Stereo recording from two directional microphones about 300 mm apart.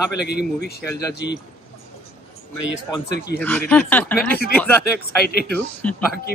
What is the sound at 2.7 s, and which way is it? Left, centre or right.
Speech, left.